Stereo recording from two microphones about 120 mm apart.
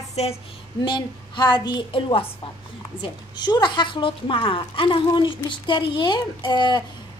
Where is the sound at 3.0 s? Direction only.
35° left (ahead or behind).